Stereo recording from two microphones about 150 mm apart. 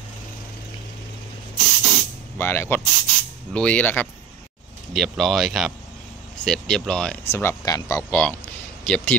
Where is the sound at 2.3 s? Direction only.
15° left (ahead or behind).